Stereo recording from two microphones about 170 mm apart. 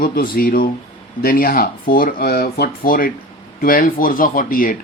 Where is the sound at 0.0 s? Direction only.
60° left (ahead or behind).